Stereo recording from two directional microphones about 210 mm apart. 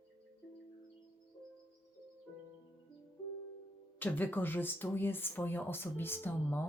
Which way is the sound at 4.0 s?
10° left (ahead or behind).